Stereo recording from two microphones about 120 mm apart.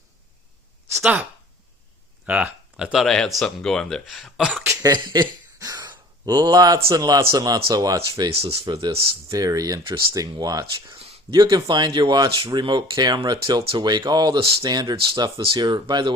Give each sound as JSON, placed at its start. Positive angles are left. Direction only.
{"t": 2.2, "sound": "speech", "side_deg": -10}
{"t": 4.6, "sound": "speech", "side_deg": -25}
{"t": 4.9, "sound": "a sound", "side_deg": -35}
{"t": 6.9, "sound": "speech", "side_deg": -30}
{"t": 9.8, "sound": "speech", "side_deg": -45}
{"t": 10.2, "sound": "speech", "side_deg": -30}
{"t": 14.3, "sound": "speech", "side_deg": -50}
{"t": 14.6, "sound": "speech", "side_deg": -35}